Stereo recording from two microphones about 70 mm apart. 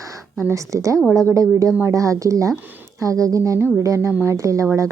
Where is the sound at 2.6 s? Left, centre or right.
Right.